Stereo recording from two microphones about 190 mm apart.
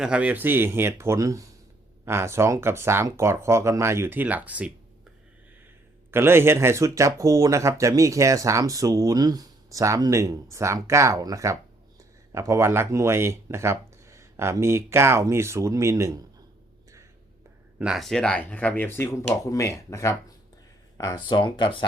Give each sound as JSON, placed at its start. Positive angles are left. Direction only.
{"t": 0.0, "sound": "speech", "side_deg": -5}
{"t": 6.1, "sound": "speech", "side_deg": -10}
{"t": 17.7, "sound": "speech", "side_deg": 0}